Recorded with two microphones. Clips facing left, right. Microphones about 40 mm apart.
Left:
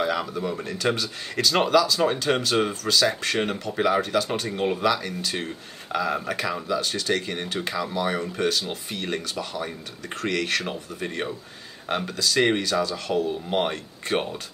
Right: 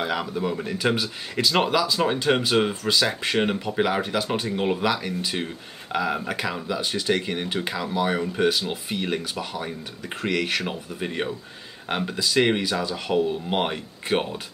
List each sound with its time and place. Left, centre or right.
0.0 s speech: centre
13.7 s speech: centre